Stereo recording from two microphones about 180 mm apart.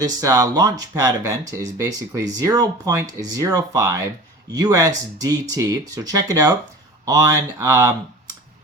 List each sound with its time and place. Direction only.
0.0 s speech: 20° right (ahead or behind)